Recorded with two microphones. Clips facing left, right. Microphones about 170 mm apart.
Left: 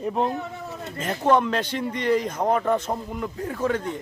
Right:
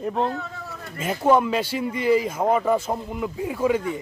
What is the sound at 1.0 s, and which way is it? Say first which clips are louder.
Speech: right 2 dB; 10° right (ahead or behind).